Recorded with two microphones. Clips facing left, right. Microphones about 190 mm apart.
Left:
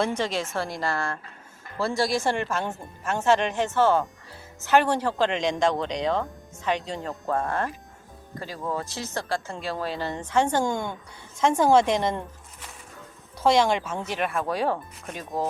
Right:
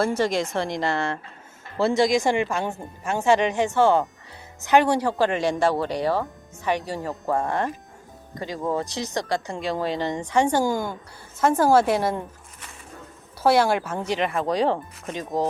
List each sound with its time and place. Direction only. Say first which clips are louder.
0.0 s a woman's voice: right 4 dB; 10° right (ahead or behind)
13.4 s speech: right 2 dB; 5° right (ahead or behind)